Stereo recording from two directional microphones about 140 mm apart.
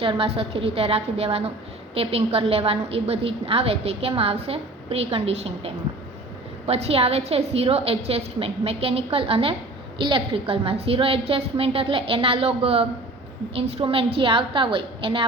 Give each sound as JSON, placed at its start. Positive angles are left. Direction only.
{"t": 0.0, "sound": "a woman's voice", "side_deg": -40}